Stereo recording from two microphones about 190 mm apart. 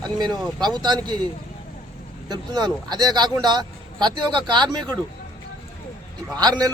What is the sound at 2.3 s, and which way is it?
Speech, 20° right (ahead or behind).